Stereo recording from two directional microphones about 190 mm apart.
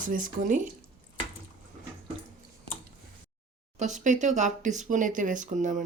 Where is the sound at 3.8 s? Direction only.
40° right (ahead or behind).